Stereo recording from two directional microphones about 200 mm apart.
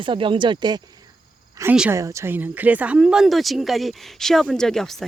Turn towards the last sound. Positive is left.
turn(degrees=0)  # may be behind; listen again after turning